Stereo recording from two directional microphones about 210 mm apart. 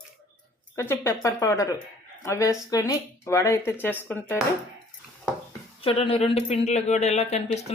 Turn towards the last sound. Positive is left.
turn(degrees=30)  # may be behind; listen again after turning